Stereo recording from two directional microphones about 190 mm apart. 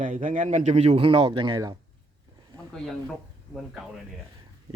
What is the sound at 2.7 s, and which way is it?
Speech, centre (ahead or behind).